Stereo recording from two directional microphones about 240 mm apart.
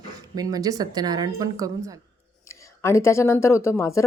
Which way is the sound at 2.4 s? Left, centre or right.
Centre.